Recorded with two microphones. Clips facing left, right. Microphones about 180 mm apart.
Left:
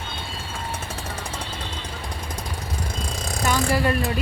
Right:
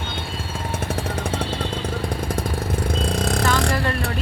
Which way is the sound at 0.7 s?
55° right (ahead or behind).